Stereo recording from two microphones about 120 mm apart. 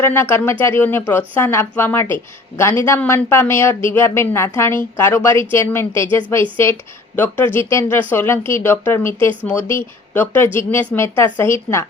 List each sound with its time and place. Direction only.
0.0 s speech: 20° left (ahead or behind)